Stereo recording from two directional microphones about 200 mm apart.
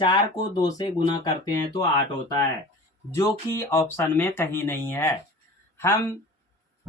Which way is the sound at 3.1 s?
15° left (ahead or behind).